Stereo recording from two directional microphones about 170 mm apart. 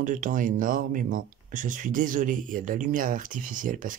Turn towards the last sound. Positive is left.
turn(degrees=-50)  # may be behind; listen again after turning